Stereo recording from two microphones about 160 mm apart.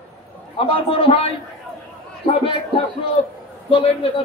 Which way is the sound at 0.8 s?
35° left (ahead or behind).